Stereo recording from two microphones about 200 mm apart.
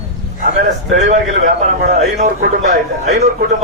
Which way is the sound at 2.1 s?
40° right (ahead or behind).